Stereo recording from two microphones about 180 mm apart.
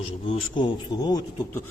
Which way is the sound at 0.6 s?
25° left (ahead or behind).